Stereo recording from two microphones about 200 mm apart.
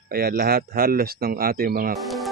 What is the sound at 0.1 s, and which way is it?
Speech, 50° right (ahead or behind).